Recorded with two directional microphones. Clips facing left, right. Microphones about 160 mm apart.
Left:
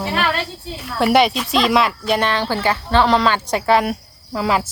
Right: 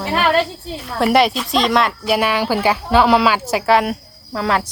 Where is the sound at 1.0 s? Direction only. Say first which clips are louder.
Even; centre (ahead or behind).